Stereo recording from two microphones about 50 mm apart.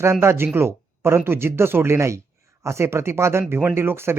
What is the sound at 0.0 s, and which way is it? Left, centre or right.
Speech, right.